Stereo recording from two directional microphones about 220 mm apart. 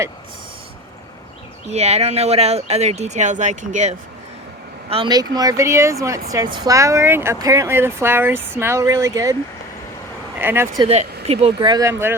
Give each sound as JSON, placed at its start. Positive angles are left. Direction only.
{"t": 1.7, "sound": "speech", "side_deg": -30}
{"t": 4.9, "sound": "speech", "side_deg": -20}
{"t": 10.3, "sound": "speech", "side_deg": -10}
{"t": 11.3, "sound": "speech", "side_deg": -25}